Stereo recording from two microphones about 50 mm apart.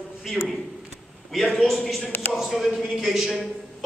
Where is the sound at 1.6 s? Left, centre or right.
Centre.